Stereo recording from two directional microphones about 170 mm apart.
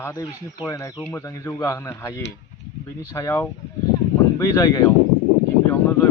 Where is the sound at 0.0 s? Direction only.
20° left (ahead or behind).